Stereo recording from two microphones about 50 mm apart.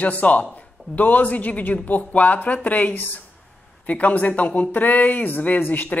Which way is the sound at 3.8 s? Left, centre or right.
Left.